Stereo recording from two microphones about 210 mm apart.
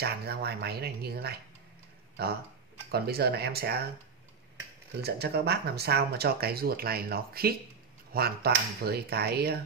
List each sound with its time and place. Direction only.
0.0 s speech: 50° right (ahead or behind)
5.0 s speech: 50° right (ahead or behind)